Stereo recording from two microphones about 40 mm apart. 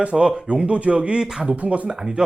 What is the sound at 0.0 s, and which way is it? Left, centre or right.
Speech, right.